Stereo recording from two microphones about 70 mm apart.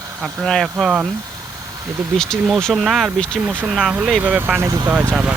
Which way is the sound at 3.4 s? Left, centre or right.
Right.